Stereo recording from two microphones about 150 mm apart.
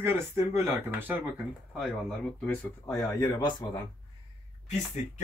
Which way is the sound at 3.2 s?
30° left (ahead or behind).